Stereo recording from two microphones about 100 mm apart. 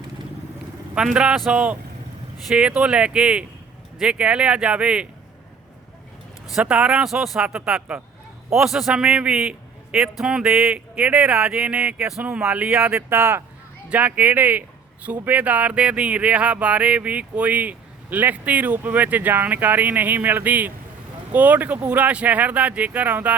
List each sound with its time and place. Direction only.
0.9 s speech: 10° right (ahead or behind)
6.5 s speech: 10° right (ahead or behind)
12.9 s speech: 20° right (ahead or behind)